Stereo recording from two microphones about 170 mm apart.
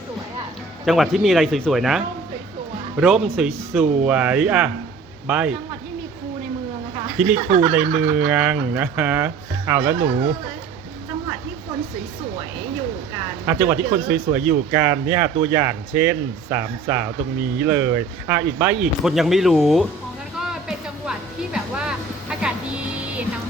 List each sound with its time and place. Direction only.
0.9 s a man's voice: centre (ahead or behind)
7.3 s speech: 45° right (ahead or behind)
7.6 s speech: 10° right (ahead or behind)
13.4 s speech: 15° right (ahead or behind)
20.4 s music: 5° right (ahead or behind)